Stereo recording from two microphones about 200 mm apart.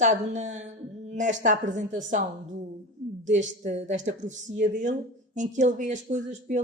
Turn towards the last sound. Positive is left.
turn(degrees=-40)  # may be behind; listen again after turning